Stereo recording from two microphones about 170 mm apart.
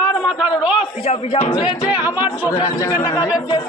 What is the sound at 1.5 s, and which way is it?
Speech, 25° left (ahead or behind).